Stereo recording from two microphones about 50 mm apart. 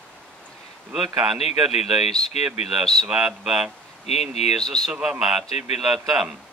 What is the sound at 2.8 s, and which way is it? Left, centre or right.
Speech, centre.